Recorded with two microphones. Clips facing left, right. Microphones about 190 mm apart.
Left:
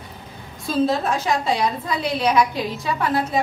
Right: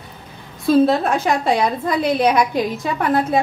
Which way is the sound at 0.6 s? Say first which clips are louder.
Right 6 dB; 60° right (ahead or behind).